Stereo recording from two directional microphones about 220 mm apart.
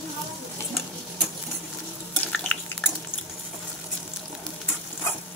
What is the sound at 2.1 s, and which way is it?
Stir, 5° left (ahead or behind).